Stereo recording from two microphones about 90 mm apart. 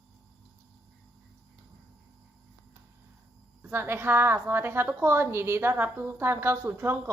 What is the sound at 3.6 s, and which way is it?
A woman's voice, 25° right (ahead or behind).